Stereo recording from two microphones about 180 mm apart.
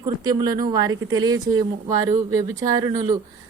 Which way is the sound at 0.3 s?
20° right (ahead or behind).